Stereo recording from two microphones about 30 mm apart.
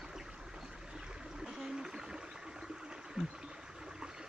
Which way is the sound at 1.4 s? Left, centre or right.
Centre.